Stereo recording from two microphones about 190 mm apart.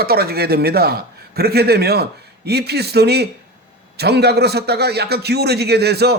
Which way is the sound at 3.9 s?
60° right (ahead or behind).